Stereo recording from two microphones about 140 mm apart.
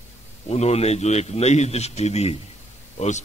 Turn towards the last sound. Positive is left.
turn(degrees=55)  # may be behind; listen again after turning